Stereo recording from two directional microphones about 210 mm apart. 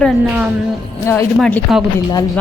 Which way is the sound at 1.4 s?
Centre (ahead or behind).